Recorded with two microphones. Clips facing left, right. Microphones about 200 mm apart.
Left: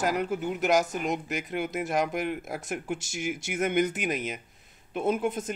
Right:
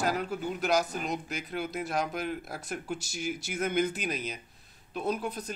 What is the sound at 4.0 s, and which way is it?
Speech, 20° left (ahead or behind).